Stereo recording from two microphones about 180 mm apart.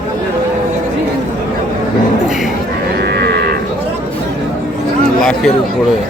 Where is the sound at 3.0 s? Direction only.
65° right (ahead or behind).